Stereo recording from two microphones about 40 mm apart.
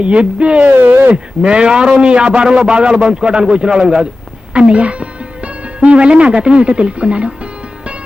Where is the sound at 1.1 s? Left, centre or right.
Right.